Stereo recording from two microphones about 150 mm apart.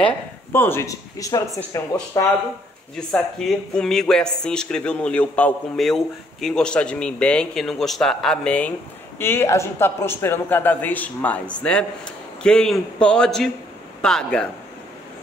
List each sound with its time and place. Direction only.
0.0 s a man's voice: 15° left (ahead or behind)
3.1 s a man's voice: 5° left (ahead or behind)